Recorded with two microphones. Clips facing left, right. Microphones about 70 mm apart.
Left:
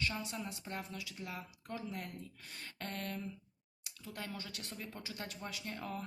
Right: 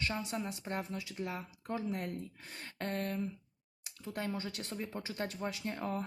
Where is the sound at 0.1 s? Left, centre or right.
Right.